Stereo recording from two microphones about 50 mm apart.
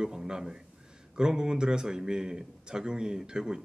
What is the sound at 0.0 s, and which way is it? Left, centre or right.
A man's voice, centre.